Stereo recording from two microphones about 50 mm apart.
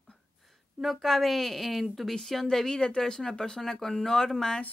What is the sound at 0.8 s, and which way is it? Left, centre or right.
A woman's voice, centre.